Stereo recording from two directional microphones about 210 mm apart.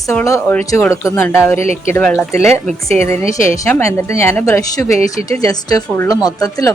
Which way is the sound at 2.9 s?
30° right (ahead or behind).